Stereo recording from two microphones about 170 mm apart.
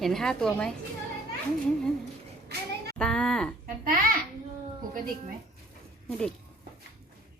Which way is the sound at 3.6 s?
55° right (ahead or behind).